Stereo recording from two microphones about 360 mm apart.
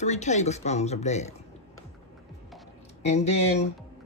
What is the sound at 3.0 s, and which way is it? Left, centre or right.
Speech, centre.